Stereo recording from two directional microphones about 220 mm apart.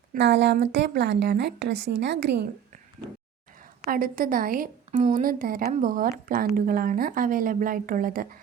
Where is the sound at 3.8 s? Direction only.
40° right (ahead or behind).